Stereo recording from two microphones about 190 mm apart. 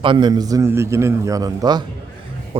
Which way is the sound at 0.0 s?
25° right (ahead or behind).